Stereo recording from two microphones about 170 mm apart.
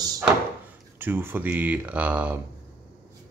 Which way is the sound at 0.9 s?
15° right (ahead or behind).